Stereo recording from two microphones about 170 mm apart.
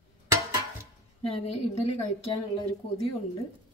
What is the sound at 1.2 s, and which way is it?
Speech, 35° left (ahead or behind).